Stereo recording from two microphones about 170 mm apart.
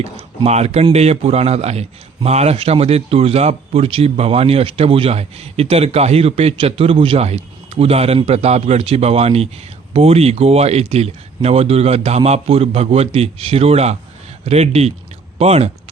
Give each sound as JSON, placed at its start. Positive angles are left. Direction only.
{"t": 0.0, "sound": "speech", "side_deg": -40}